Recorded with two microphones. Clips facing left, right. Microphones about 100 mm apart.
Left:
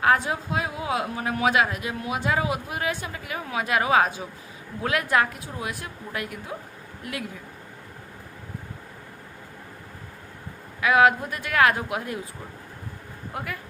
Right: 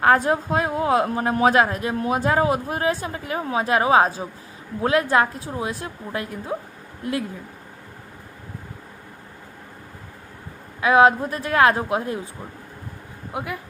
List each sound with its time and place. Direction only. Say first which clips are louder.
0.0 s a woman's voice: right 4 dB; 40° right (ahead or behind)
10.8 s a woman's voice: right 3 dB; 30° right (ahead or behind)
13.3 s a woman's voice: right 4 dB; 20° right (ahead or behind)